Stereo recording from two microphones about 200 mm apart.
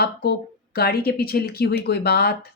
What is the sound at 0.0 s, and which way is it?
Speech, 50° left (ahead or behind).